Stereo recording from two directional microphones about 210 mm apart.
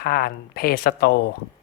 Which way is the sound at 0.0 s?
45° left (ahead or behind).